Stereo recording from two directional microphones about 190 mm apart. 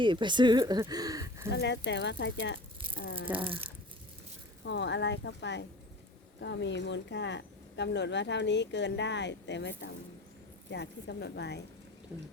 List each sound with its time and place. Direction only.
0.0 s speech: 25° right (ahead or behind)
1.5 s speech: 65° left (ahead or behind)
3.3 s speech: 30° right (ahead or behind)
4.6 s a woman's voice: 70° left (ahead or behind)